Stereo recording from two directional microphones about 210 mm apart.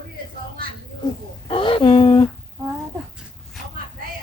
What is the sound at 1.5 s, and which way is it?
Speech, 25° left (ahead or behind).